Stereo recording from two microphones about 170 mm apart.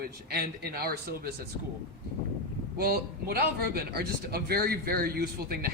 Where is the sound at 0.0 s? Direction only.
65° right (ahead or behind).